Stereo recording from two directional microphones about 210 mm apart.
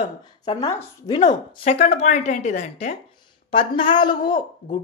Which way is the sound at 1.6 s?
30° left (ahead or behind).